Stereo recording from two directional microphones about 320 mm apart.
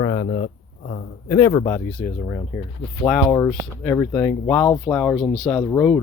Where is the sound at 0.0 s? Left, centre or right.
Left.